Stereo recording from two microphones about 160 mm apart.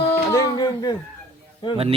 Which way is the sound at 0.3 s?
20° left (ahead or behind).